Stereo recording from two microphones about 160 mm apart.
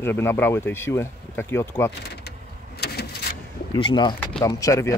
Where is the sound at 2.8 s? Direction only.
90° left.